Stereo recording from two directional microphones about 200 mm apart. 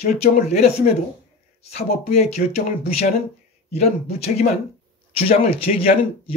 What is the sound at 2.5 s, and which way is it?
Speech, 30° left (ahead or behind).